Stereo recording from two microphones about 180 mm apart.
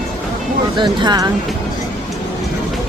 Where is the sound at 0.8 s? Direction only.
25° right (ahead or behind).